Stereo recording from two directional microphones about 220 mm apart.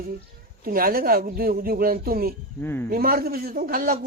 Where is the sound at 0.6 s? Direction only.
40° right (ahead or behind).